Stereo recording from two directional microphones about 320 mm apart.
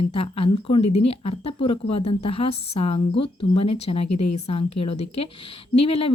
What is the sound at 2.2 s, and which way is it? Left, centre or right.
Speech, centre.